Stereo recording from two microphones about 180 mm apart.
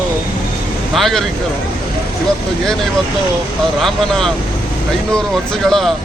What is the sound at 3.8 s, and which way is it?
Speech, centre (ahead or behind).